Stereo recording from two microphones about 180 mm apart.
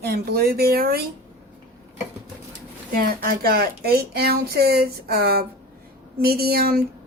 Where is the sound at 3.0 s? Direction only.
55° right (ahead or behind).